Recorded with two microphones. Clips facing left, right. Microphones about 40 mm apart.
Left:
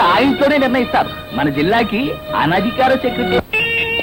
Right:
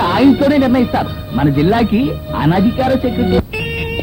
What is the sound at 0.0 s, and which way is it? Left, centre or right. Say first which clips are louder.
A man's voice: right 1 dB; left.